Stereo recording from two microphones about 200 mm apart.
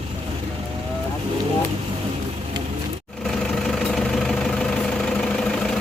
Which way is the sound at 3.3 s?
Centre (ahead or behind).